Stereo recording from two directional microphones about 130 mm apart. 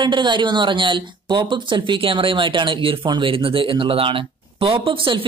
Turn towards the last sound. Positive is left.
turn(degrees=-40)  # may be behind; listen again after turning